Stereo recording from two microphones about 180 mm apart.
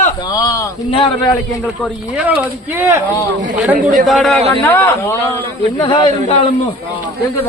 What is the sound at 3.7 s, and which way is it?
Speech, 50° right (ahead or behind).